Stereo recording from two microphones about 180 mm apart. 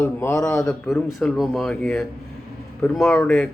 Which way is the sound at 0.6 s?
5° left (ahead or behind).